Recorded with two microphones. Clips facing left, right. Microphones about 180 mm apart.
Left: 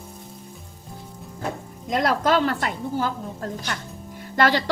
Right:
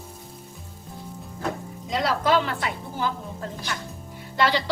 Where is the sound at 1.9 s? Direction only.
50° left (ahead or behind).